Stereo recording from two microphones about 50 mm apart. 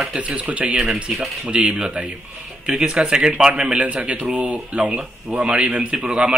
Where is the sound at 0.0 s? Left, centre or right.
Right.